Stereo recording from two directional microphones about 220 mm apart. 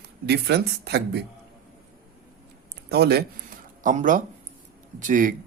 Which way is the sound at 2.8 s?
45° right (ahead or behind).